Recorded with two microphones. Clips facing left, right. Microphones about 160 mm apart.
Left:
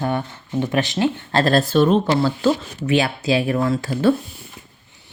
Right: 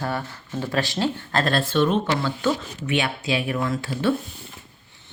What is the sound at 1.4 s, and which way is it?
Speech, 40° left (ahead or behind).